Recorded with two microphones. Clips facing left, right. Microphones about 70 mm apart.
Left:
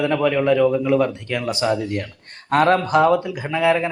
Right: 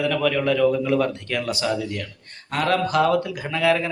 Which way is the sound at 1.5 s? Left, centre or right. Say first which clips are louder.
Left 4 dB; left.